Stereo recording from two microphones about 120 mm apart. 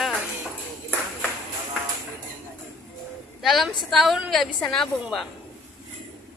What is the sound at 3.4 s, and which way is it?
A woman's voice, centre (ahead or behind).